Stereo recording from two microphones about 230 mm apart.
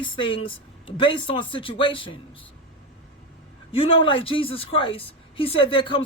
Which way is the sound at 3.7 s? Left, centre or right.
Left.